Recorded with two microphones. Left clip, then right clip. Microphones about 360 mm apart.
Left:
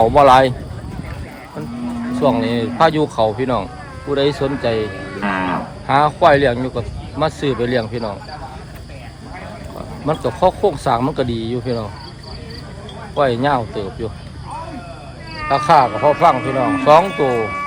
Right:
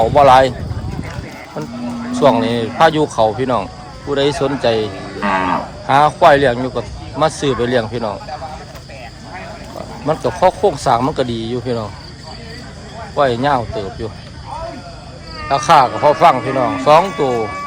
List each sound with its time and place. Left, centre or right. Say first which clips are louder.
0.0 s speech: right 1 dB; centre
2.1 s speech: right 4 dB; centre
5.2 s cattle: right 4 dB; right
5.8 s speech: right 3 dB; centre
10.1 s speech: right 2 dB; centre
13.1 s speech: right 2 dB; centre
15.4 s speech: right 2 dB; centre